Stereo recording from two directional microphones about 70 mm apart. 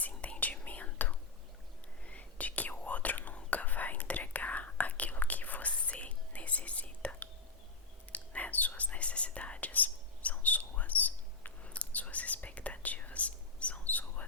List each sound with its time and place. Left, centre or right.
0.0 s whispering: left